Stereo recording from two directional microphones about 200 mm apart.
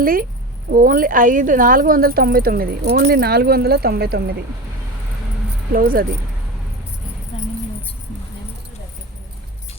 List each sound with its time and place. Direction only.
0.0 s speech: 45° right (ahead or behind)
5.7 s speech: 45° right (ahead or behind)
7.3 s a sound: 30° left (ahead or behind)